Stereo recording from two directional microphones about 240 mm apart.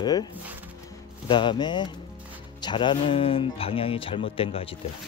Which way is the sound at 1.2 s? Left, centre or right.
Centre.